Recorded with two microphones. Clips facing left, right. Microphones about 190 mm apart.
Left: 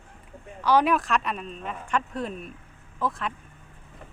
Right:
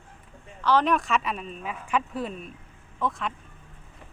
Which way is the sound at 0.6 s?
10° left (ahead or behind).